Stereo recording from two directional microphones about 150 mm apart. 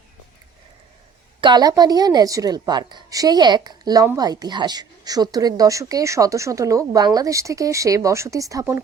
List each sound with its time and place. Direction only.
1.4 s speech: 30° right (ahead or behind)